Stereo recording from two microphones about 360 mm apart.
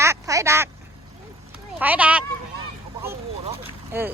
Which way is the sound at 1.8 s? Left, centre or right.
Centre.